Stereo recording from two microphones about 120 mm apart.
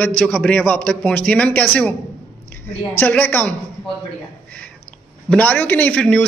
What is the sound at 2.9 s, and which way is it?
Speech, 15° left (ahead or behind).